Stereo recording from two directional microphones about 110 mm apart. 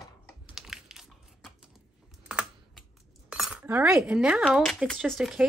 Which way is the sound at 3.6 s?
20° right (ahead or behind).